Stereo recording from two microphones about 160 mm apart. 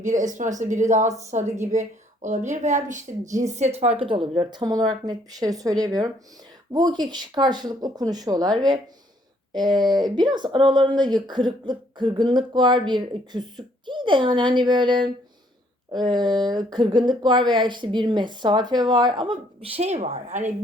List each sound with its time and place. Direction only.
0.0 s a woman's voice: 50° right (ahead or behind); by 8.4 s 25° right (ahead or behind)
9.5 s speech: 30° right (ahead or behind)
19.7 s a woman's voice: 45° right (ahead or behind)